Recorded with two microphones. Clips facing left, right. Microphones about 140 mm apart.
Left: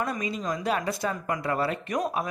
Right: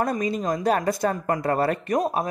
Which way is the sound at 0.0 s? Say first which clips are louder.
Right 5 dB; 45° right (ahead or behind).